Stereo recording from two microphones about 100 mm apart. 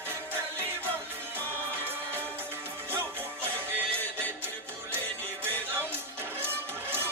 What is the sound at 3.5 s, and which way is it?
Music, 15° left (ahead or behind).